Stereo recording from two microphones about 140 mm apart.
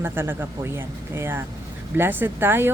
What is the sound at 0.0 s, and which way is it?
Speech, 15° right (ahead or behind).